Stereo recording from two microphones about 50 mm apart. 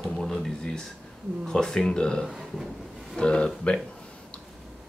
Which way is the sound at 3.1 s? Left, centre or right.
Centre.